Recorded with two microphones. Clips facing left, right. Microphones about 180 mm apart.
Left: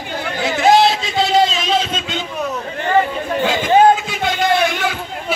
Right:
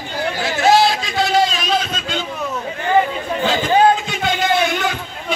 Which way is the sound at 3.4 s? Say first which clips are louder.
Left 2 dB; 5° left (ahead or behind).